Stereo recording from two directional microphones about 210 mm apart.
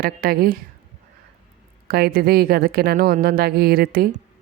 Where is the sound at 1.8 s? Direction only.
45° right (ahead or behind).